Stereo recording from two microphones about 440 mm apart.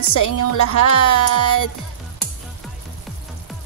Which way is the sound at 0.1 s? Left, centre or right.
Left.